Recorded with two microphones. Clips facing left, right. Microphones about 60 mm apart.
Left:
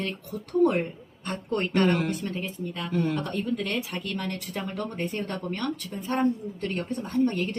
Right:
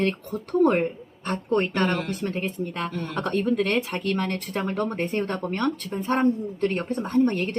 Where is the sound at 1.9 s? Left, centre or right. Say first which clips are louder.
Left 1 dB; centre.